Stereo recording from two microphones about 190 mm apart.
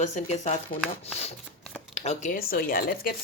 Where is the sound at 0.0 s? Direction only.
40° left (ahead or behind).